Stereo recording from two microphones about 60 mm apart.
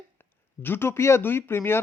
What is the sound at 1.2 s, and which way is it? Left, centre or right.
Speech, left.